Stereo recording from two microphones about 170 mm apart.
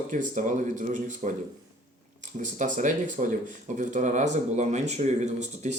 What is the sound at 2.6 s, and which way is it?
Speech, 45° right (ahead or behind).